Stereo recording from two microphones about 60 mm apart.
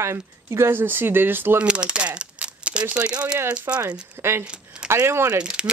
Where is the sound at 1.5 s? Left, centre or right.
Centre.